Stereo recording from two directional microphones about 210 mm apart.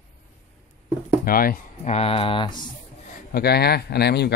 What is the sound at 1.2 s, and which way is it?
Speech, 45° left (ahead or behind).